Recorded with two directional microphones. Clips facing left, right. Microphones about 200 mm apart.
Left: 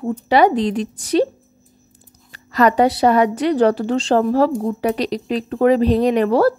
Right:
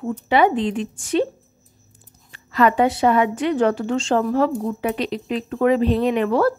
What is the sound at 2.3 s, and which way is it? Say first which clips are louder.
A woman's voice: left 2 dB; 40° left (ahead or behind).